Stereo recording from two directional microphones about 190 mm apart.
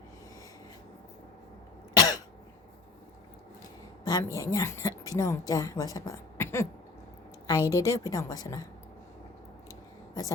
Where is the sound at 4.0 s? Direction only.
20° left (ahead or behind).